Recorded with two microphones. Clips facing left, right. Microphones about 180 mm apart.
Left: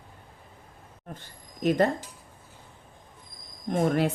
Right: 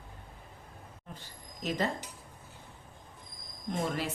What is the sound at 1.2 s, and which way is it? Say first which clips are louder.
Speech: left 9 dB; 55° left (ahead or behind).